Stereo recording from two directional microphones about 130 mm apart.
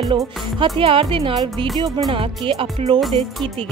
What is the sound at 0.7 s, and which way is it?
Speech, 45° right (ahead or behind).